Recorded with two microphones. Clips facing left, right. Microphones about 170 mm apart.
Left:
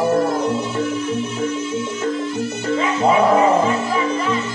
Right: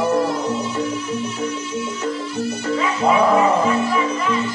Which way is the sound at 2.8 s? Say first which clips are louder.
Left 1 dB; 25° left (ahead or behind).